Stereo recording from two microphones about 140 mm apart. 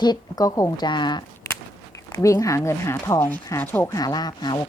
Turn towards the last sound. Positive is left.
turn(degrees=30)  # may be behind; listen again after turning